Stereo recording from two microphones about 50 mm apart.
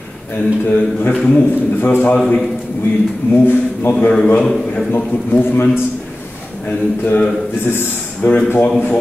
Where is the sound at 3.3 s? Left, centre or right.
Left.